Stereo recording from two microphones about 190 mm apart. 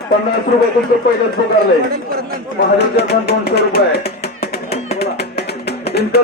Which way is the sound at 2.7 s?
60° left (ahead or behind).